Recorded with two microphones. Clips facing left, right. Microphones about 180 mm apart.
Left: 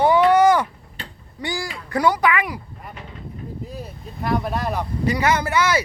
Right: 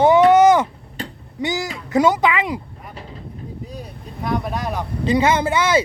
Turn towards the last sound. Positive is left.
turn(degrees=-25)  # may be behind; listen again after turning